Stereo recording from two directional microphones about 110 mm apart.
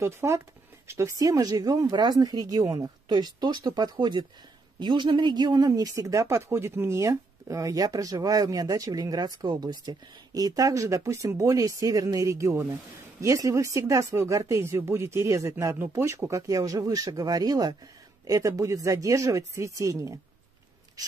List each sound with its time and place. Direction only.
0.0 s a man's voice: 25° right (ahead or behind)